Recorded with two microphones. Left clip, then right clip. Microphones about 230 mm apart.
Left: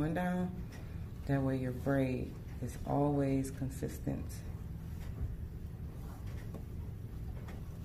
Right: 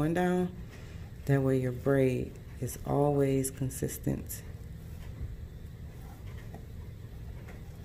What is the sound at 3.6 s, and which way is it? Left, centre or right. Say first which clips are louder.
Speech: right 5 dB; right.